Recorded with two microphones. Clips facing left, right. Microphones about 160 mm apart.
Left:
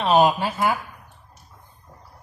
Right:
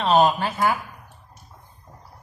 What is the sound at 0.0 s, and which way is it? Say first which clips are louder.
Speech: left 1 dB; 10° left (ahead or behind).